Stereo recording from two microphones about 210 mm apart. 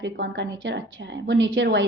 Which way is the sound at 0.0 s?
60° right (ahead or behind).